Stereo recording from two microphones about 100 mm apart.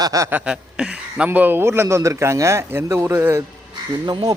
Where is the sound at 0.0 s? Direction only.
35° right (ahead or behind).